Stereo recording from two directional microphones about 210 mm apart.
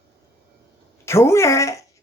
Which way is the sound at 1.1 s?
10° left (ahead or behind).